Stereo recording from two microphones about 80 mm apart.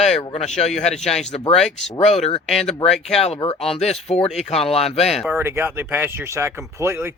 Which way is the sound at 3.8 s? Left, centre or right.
Centre.